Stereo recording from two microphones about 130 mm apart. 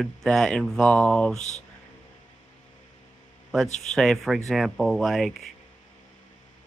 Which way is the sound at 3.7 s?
65° left (ahead or behind).